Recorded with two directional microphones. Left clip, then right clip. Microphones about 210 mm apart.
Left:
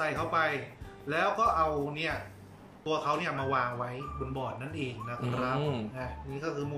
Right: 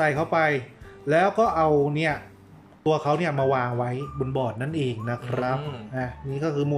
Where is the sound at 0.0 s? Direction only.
40° right (ahead or behind).